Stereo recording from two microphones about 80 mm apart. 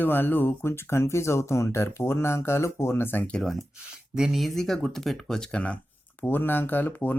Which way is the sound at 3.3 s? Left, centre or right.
Centre.